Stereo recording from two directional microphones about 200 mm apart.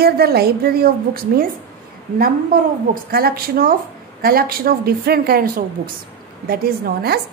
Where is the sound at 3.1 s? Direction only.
50° right (ahead or behind).